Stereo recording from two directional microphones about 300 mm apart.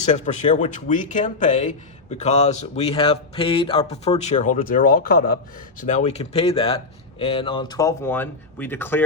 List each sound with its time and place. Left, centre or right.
0.0 s speech: left; by 9.0 s centre